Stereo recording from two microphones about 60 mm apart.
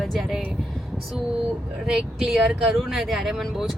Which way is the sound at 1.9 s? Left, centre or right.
Centre.